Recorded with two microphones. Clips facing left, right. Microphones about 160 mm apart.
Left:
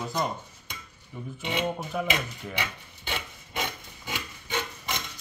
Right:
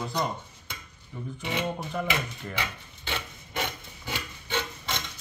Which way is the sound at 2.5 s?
15° left (ahead or behind).